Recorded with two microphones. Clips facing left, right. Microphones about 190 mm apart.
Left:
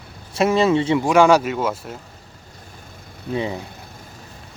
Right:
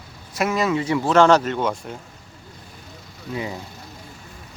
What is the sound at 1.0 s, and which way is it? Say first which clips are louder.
Speech: right 1 dB; 10° left (ahead or behind).